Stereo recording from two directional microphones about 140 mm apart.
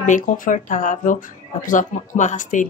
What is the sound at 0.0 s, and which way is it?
A woman's voice, 65° left (ahead or behind).